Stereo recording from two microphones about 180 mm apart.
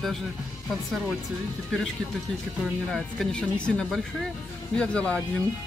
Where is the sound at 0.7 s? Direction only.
Centre (ahead or behind).